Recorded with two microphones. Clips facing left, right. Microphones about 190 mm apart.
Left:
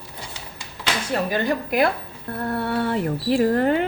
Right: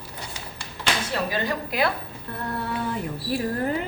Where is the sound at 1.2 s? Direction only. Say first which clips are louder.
Left 4 dB; 50° left (ahead or behind).